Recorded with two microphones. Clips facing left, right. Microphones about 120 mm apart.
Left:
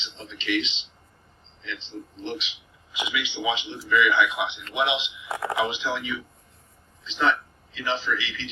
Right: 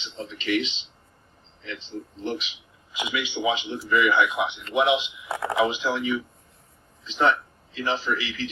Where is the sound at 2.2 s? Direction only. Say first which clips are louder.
Right 3 dB; 45° right (ahead or behind).